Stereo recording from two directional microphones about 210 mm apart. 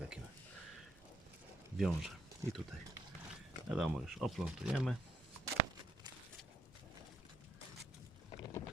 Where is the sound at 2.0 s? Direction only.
Centre (ahead or behind).